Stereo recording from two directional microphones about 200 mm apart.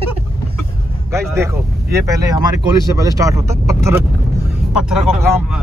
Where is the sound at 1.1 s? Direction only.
15° right (ahead or behind).